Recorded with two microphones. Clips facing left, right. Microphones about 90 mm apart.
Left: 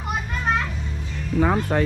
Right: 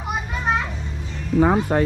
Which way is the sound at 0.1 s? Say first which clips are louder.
Right 1 dB; centre (ahead or behind).